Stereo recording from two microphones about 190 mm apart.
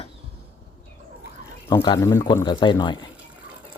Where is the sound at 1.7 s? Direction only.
20° left (ahead or behind).